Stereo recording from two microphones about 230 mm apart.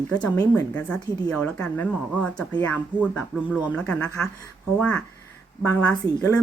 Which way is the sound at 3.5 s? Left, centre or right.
Centre.